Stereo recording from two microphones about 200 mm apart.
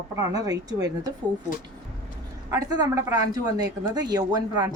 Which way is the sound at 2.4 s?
15° right (ahead or behind).